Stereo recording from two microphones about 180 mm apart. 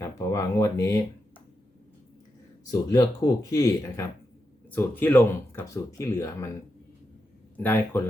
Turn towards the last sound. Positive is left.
turn(degrees=10)  # may be behind; listen again after turning